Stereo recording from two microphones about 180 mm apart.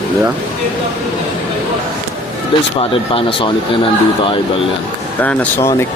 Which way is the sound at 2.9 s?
30° left (ahead or behind).